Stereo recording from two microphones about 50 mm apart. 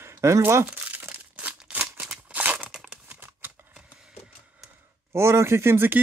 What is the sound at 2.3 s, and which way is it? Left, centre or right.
Crumpling, right.